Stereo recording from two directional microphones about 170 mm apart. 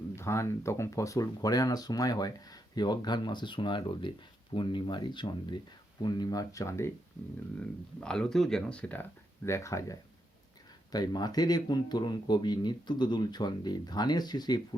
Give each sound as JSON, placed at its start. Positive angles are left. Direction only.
{"t": 0.2, "sound": "speech", "side_deg": 15}
{"t": 8.0, "sound": "speech", "side_deg": 5}